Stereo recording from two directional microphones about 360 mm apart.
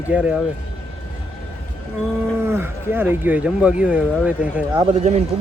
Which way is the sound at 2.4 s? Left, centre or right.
Centre.